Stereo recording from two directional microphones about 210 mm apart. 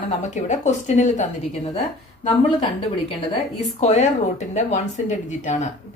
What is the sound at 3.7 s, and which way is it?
A woman's voice, 35° left (ahead or behind).